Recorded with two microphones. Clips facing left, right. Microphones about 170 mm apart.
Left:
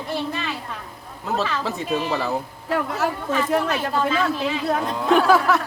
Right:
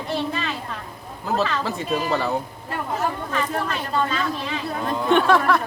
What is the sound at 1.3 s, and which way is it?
Speech, centre (ahead or behind).